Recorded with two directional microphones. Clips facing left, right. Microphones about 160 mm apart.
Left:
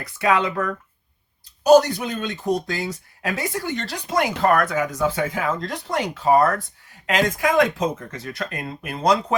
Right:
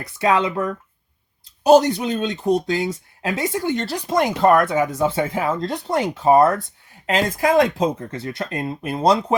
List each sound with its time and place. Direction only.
0.2 s speech: 25° right (ahead or behind)